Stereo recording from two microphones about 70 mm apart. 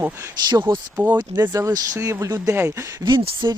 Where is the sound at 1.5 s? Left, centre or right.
Right.